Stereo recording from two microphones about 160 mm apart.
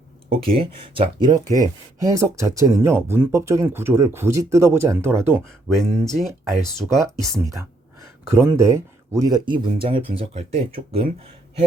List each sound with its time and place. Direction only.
0.3 s speech: 35° right (ahead or behind); by 5.9 s 15° right (ahead or behind)
6.1 s speech: 5° left (ahead or behind)
6.8 s speech: 20° right (ahead or behind); by 11.1 s 35° right (ahead or behind)